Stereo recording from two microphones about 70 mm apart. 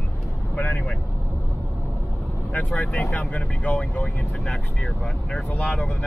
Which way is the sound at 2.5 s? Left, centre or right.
Left.